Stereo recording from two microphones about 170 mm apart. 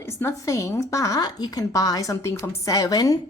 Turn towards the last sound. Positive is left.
turn(degrees=20)  # may be behind; listen again after turning